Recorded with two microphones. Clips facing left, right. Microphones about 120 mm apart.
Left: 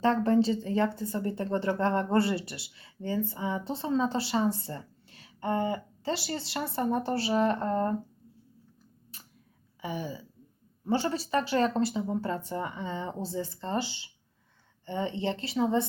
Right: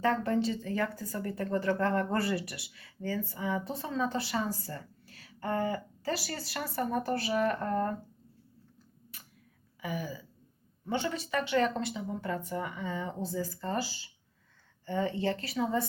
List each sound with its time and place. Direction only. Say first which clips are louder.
0.0 s a woman's voice: left 4 dB; 30° left (ahead or behind)
9.1 s a sound: left 1 dB; 30° left (ahead or behind)
9.8 s a woman's voice: left 2 dB; 30° left (ahead or behind)